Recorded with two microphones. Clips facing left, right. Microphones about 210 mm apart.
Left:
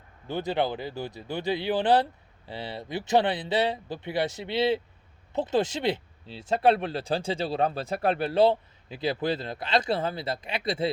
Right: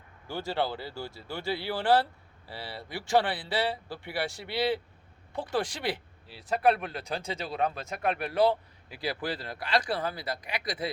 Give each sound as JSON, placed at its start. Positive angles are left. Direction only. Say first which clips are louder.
{"t": 0.3, "sound": "speech", "louder": "left 4 dB", "side_deg": 20}